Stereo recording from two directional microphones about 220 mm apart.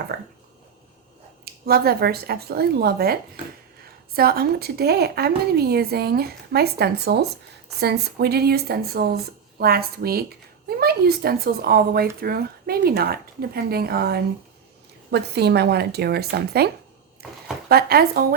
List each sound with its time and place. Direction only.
0.1 s a woman's voice: 45° right (ahead or behind)
1.5 s a woman's voice: 45° right (ahead or behind)